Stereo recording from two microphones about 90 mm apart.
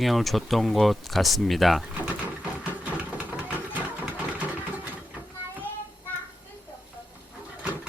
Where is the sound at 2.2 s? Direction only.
15° right (ahead or behind).